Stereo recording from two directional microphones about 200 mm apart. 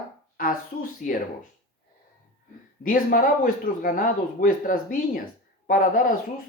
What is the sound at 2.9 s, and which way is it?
Speech, 45° left (ahead or behind).